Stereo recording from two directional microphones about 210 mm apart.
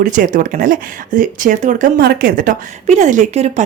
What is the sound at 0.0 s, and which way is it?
A woman's voice, 40° right (ahead or behind).